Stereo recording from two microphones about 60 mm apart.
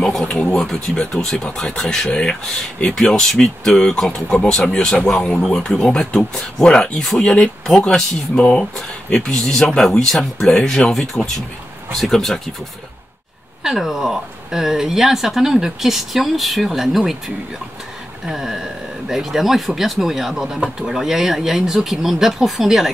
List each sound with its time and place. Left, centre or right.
0.0 s a sound: centre
0.4 s speech: centre
13.6 s speech: centre
18.2 s speech: centre